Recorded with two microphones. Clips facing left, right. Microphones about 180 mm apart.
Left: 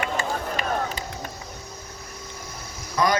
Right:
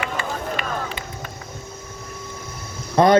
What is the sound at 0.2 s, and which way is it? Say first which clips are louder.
Run: right 1 dB; 40° left (ahead or behind).